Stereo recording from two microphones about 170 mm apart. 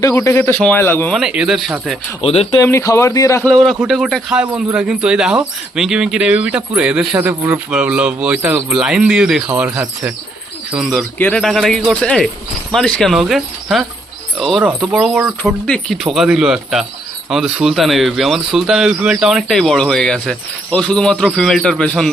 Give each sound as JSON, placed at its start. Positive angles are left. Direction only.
{"t": 0.1, "sound": "speech", "side_deg": 10}
{"t": 1.1, "sound": "speech", "side_deg": -5}
{"t": 2.2, "sound": "speech", "side_deg": 35}
{"t": 2.6, "sound": "speech", "side_deg": 15}
{"t": 3.8, "sound": "speech", "side_deg": 0}